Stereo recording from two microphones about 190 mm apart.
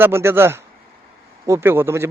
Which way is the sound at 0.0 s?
15° right (ahead or behind).